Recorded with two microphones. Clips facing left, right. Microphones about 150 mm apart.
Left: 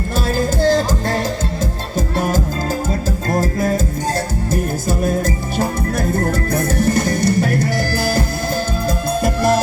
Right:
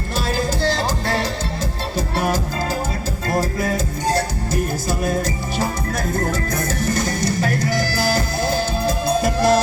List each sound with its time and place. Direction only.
0.3 s music: 50° left (ahead or behind)
4.9 s music: 50° left (ahead or behind)